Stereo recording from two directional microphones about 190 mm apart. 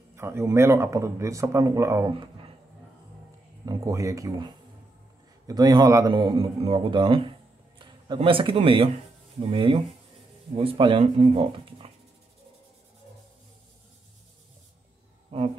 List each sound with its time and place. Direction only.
0.1 s a man's voice: 15° right (ahead or behind)
3.6 s a man's voice: 20° right (ahead or behind)
15.3 s a sound: 30° right (ahead or behind)